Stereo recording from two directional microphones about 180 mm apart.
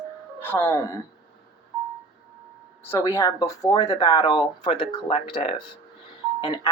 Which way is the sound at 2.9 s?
15° left (ahead or behind).